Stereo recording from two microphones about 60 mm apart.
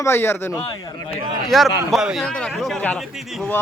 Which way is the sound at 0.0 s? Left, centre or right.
Left.